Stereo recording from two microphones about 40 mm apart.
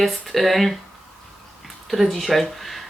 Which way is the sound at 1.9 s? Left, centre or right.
Centre.